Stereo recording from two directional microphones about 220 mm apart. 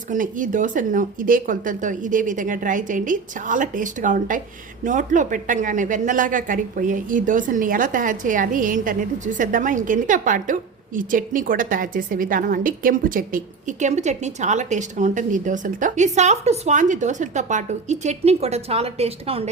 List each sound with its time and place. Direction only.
0.1 s a woman's voice: 35° right (ahead or behind)